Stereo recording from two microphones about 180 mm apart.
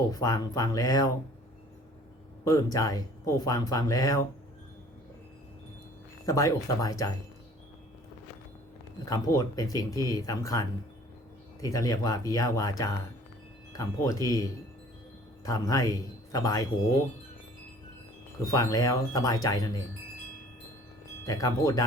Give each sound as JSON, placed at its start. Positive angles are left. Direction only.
{"t": 0.1, "sound": "speech", "side_deg": 20}
{"t": 2.4, "sound": "speech", "side_deg": 20}
{"t": 6.2, "sound": "speech", "side_deg": 20}
{"t": 9.0, "sound": "speech", "side_deg": 20}
{"t": 15.4, "sound": "speech", "side_deg": 20}
{"t": 18.4, "sound": "speech", "side_deg": 20}
{"t": 21.2, "sound": "speech", "side_deg": 20}